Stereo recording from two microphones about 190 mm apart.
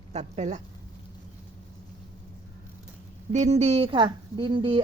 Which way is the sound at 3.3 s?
35° right (ahead or behind).